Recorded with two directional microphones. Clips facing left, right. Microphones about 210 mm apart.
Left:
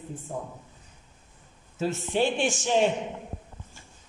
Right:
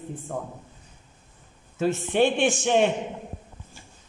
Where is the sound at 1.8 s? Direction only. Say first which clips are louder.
Right 4 dB; 60° right (ahead or behind).